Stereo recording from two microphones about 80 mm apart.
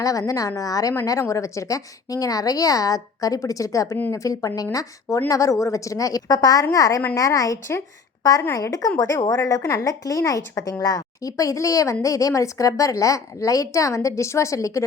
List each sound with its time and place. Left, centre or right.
0.0 s speech: left